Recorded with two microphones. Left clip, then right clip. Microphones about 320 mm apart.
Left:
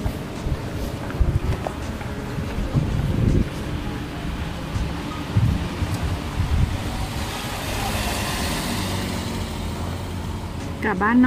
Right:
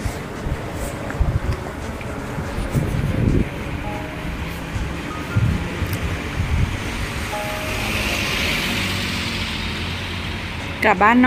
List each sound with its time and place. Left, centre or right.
8.0 s music: left
10.8 s speech: centre